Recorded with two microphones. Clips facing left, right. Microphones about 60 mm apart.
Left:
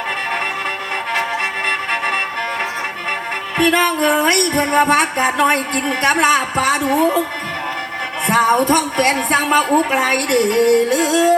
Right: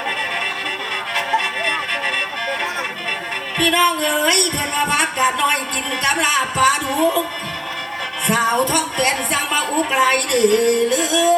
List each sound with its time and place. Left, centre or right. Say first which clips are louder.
3.6 s a woman's voice: left 2 dB; left
8.3 s a woman's voice: left 4 dB; left